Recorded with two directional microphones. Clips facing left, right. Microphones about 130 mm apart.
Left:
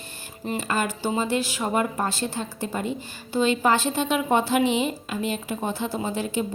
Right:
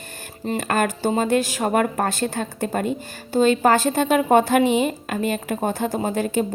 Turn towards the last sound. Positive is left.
turn(degrees=-50)  # may be behind; listen again after turning